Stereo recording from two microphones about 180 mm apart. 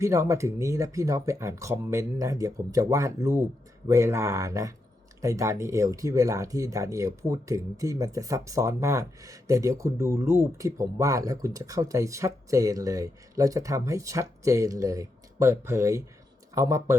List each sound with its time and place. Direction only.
0.0 s speech: 15° right (ahead or behind)